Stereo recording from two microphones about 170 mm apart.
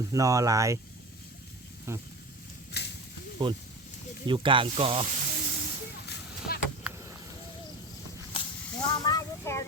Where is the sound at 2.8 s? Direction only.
80° left.